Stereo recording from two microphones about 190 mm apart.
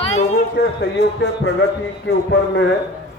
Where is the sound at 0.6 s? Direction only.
60° left (ahead or behind).